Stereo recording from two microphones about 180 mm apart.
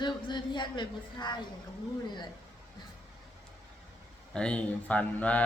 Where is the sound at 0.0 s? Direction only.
25° left (ahead or behind).